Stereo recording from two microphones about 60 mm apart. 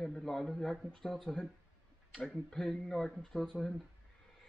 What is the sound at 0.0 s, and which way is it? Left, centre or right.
A man's voice, centre.